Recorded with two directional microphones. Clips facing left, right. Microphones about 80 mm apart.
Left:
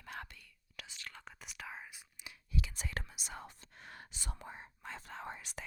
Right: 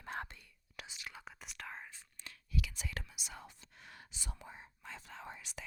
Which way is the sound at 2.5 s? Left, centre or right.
Left.